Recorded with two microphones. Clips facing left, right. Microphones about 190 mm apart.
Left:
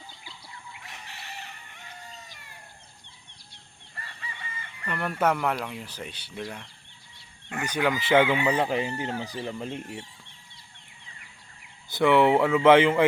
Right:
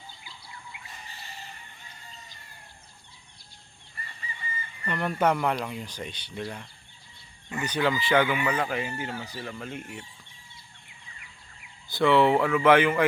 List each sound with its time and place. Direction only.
0.9 s chicken: 75° left (ahead or behind)
3.9 s chicken: 85° left
4.9 s speech: centre (ahead or behind)
7.7 s speech: 10° left (ahead or behind)
8.0 s speech: 25° left (ahead or behind)
11.9 s speech: 20° left (ahead or behind)